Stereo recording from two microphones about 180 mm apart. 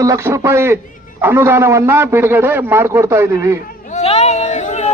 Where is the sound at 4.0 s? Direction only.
35° left (ahead or behind).